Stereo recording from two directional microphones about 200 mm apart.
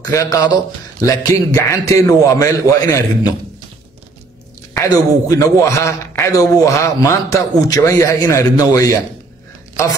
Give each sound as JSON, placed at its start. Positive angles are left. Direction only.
{"t": 0.0, "sound": "a man's voice", "side_deg": 15}
{"t": 4.7, "sound": "a man's voice", "side_deg": 15}